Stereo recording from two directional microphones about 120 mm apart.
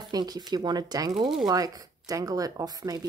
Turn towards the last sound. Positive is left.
turn(degrees=-30)  # may be behind; listen again after turning